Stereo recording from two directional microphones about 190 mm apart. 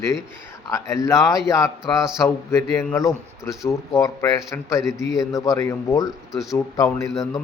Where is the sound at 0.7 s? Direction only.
15° left (ahead or behind).